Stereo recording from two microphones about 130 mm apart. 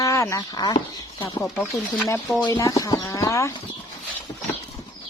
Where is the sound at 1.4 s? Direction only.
Centre (ahead or behind).